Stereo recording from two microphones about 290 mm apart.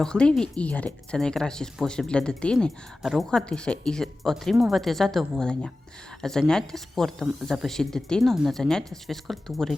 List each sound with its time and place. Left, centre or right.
0.0 s speech: centre